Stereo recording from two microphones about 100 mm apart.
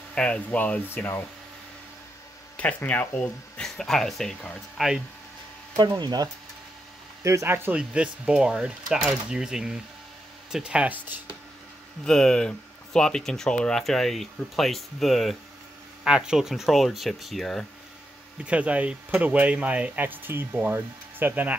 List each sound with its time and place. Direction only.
0.1 s speech: 10° left (ahead or behind)
2.5 s speech: 15° left (ahead or behind)
3.6 s speech: 5° left (ahead or behind)
5.8 s speech: 45° right (ahead or behind)
7.2 s speech: 25° right (ahead or behind)
12.0 s speech: 5° left (ahead or behind)
18.4 s speech: 10° right (ahead or behind)